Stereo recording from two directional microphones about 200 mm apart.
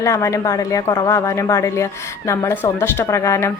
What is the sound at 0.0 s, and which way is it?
A woman's voice, 15° left (ahead or behind).